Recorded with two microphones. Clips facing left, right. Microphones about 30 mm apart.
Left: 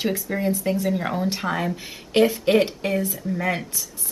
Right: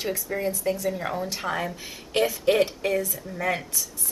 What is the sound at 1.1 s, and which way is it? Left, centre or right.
Speech, left.